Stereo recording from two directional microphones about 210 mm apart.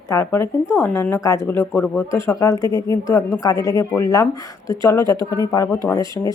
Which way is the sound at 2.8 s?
15° left (ahead or behind).